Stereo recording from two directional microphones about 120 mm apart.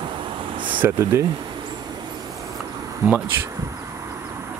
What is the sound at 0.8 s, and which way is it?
Speech, 25° right (ahead or behind).